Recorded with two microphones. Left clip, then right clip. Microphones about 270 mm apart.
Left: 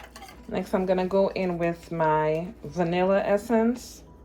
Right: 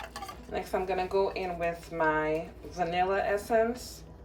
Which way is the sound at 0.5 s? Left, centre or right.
Left.